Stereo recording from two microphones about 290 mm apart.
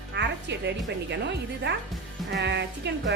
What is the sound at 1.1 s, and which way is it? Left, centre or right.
Speech, right.